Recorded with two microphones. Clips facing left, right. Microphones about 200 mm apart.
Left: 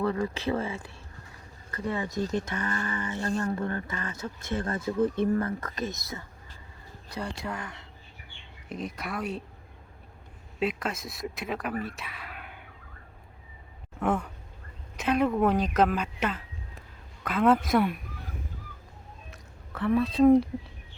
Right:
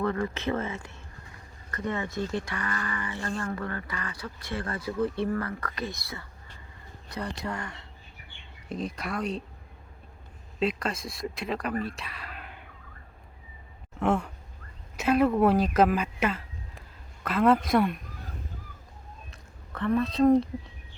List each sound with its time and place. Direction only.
0.0 s speech: 10° left (ahead or behind)
2.0 s speech: 40° left (ahead or behind)
2.4 s speech: 20° left (ahead or behind)
5.7 s speech: 40° left (ahead or behind)
7.4 s speech: 5° left (ahead or behind)
10.6 s speech: 5° left (ahead or behind)
11.9 s whispering: centre (ahead or behind)
14.0 s speech: 5° left (ahead or behind)
14.9 s speech: 5° right (ahead or behind)
19.7 s speech: 5° left (ahead or behind)